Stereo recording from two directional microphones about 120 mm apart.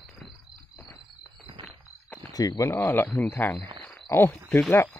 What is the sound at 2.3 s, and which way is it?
Speech, 30° left (ahead or behind).